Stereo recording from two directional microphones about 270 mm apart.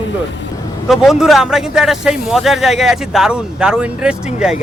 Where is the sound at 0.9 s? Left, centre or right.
Centre.